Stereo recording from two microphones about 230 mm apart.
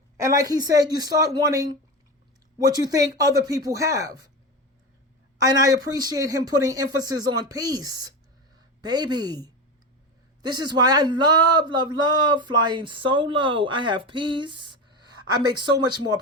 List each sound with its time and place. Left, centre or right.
0.2 s speech: centre
5.4 s speech: centre